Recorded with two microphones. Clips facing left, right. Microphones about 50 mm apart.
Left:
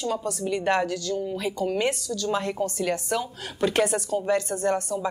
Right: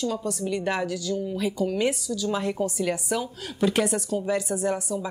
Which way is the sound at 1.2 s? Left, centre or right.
Centre.